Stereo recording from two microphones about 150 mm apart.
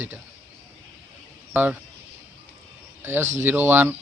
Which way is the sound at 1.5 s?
10° right (ahead or behind).